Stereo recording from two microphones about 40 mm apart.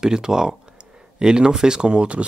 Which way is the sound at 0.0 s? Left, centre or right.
Centre.